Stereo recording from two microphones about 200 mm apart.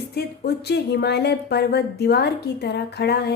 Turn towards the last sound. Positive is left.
turn(degrees=55)  # may be behind; listen again after turning